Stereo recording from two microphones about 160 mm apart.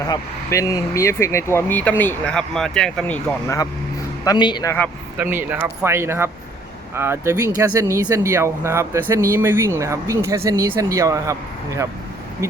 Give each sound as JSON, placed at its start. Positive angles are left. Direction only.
{"t": 0.1, "sound": "speech", "side_deg": 20}
{"t": 4.2, "sound": "a man's voice", "side_deg": 25}
{"t": 5.2, "sound": "speech", "side_deg": -10}
{"t": 12.4, "sound": "speech", "side_deg": -15}